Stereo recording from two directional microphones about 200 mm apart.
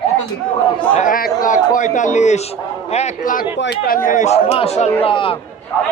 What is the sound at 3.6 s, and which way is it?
Speech, 60° left (ahead or behind).